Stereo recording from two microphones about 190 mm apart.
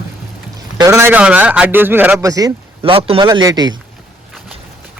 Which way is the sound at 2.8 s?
30° right (ahead or behind).